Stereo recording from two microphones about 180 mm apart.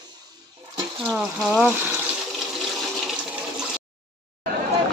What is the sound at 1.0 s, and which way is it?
Speech, 5° right (ahead or behind).